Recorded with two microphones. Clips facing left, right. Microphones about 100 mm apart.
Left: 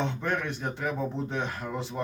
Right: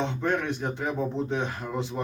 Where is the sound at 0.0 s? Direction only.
20° right (ahead or behind).